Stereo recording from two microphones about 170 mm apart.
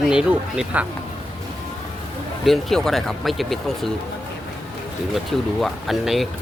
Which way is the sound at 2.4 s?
Centre (ahead or behind).